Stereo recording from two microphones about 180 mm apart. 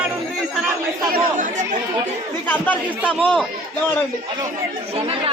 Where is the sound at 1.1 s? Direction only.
50° right (ahead or behind).